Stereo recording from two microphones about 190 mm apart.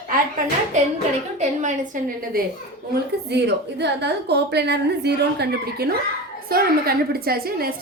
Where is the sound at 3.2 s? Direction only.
65° right (ahead or behind).